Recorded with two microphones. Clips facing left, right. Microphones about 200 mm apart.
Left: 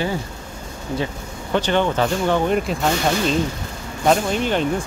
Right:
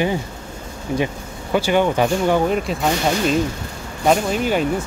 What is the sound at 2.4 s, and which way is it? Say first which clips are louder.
Speech: even; centre (ahead or behind).